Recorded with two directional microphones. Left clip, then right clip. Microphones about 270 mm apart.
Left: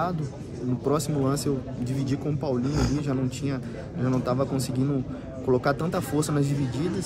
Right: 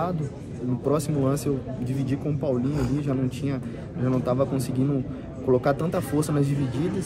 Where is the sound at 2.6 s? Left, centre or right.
Left.